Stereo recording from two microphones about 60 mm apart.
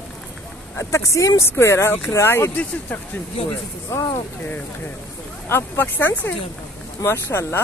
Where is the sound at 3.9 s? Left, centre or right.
Left.